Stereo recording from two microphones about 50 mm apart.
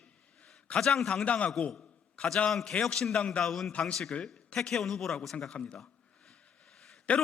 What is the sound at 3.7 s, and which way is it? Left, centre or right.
Speech, left.